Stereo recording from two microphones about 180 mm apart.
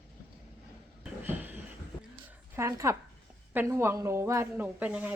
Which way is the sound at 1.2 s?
10° right (ahead or behind).